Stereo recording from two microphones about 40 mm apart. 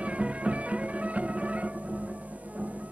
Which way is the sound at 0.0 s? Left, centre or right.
Right.